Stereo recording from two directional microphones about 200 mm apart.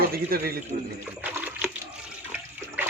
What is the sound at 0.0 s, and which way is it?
Speech, 50° right (ahead or behind).